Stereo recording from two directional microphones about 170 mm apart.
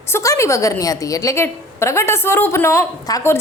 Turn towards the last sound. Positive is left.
turn(degrees=20)  # may be behind; listen again after turning